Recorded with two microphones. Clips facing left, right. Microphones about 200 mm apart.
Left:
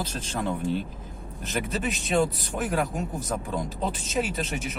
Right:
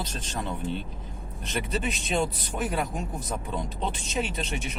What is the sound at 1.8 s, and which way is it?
Speech, centre (ahead or behind).